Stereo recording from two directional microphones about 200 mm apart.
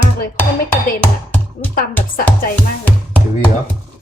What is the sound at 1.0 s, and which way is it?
Tap, 10° left (ahead or behind).